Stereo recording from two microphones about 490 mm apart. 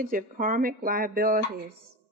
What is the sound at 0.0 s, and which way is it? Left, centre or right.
A woman's voice, centre.